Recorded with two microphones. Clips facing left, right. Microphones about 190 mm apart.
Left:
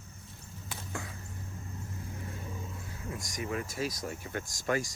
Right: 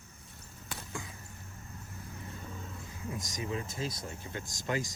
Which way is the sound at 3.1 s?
20° right (ahead or behind).